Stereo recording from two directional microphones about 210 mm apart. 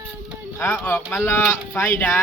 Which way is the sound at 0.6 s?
10° left (ahead or behind).